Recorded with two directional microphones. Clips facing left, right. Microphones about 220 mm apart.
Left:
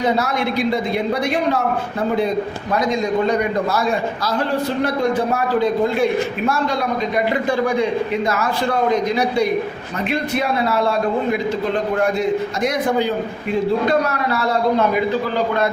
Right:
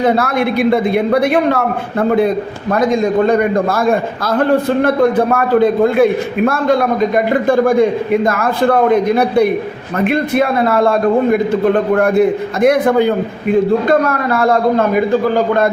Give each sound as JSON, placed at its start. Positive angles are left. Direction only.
{"t": 0.0, "sound": "a man's voice", "side_deg": -55}